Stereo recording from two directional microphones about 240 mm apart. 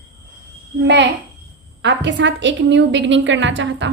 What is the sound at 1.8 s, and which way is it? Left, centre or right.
A woman's voice, right.